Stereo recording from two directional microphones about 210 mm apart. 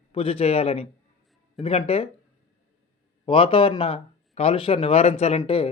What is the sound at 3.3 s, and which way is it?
Speech, 25° left (ahead or behind).